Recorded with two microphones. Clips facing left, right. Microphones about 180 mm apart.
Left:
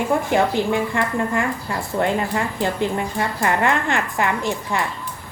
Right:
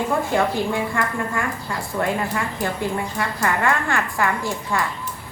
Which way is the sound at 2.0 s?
25° left (ahead or behind).